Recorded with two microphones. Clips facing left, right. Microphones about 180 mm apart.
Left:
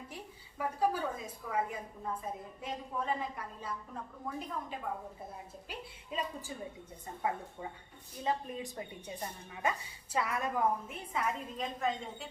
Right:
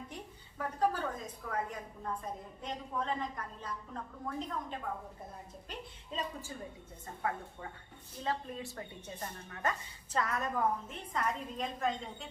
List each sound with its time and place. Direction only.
0.6 s speech: 10° left (ahead or behind)